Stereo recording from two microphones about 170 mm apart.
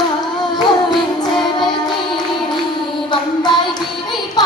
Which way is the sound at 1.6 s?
25° left (ahead or behind).